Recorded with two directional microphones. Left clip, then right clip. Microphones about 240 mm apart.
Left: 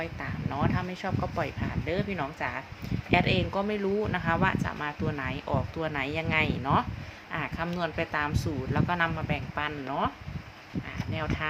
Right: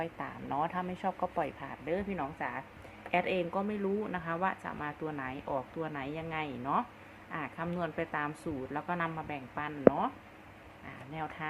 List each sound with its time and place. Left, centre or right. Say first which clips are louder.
0.0 s speech: left 3 dB; centre
11.1 s speech: left 6 dB; centre